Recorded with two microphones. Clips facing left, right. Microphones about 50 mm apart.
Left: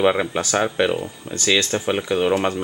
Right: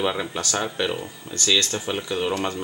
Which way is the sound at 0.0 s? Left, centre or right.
Left.